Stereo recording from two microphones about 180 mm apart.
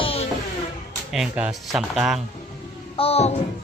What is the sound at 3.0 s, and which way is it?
Speech, 35° left (ahead or behind).